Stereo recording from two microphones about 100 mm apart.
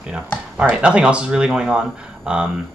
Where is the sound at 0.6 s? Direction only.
10° right (ahead or behind).